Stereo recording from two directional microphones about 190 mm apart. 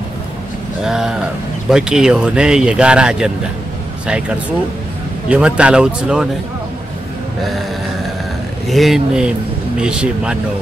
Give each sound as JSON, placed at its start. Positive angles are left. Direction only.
{"t": 0.8, "sound": "speech", "side_deg": -5}
{"t": 5.3, "sound": "speech", "side_deg": -5}
{"t": 8.6, "sound": "speech", "side_deg": 0}